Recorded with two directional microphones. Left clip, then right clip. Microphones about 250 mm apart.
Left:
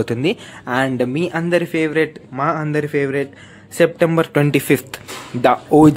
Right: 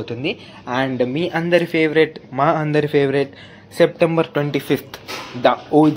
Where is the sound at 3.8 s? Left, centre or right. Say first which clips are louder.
Left 1 dB; centre.